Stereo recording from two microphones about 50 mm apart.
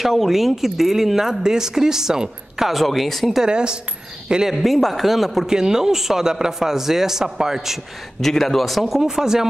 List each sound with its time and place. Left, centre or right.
0.0 s speech: centre
3.4 s a woman's voice: centre
4.6 s speech: centre
5.5 s a man's voice: centre
8.2 s speech: centre